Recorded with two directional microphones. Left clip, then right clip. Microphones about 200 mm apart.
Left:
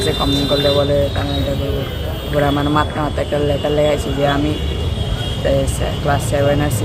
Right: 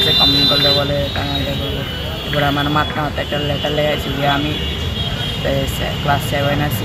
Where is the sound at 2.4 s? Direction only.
20° left (ahead or behind).